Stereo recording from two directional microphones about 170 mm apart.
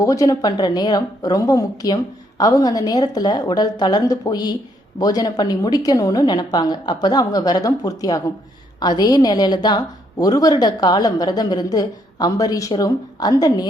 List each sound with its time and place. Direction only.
0.0 s a woman's voice: 20° left (ahead or behind)